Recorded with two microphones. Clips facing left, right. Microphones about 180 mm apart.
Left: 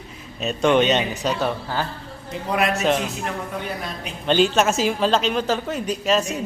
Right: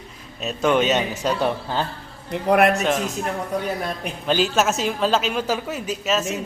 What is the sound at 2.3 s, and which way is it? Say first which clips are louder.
Speech: right 6 dB; 60° right (ahead or behind).